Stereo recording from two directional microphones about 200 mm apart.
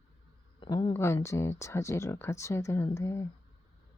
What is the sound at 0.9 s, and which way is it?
Speech, 15° left (ahead or behind).